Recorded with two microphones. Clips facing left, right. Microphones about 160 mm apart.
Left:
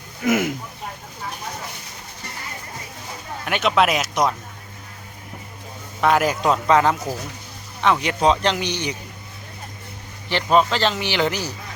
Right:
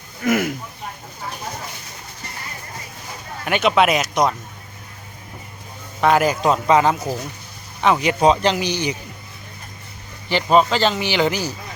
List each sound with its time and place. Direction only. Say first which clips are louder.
0.3 s speech: right 1 dB; 20° left (ahead or behind)
3.4 s a man's voice: right 2 dB; centre (ahead or behind)
6.0 s a man's voice: right 2 dB; centre (ahead or behind)
10.2 s a man's voice: right 2 dB; centre (ahead or behind)